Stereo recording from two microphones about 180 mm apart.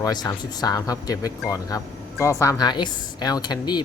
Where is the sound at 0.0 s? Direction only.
20° left (ahead or behind).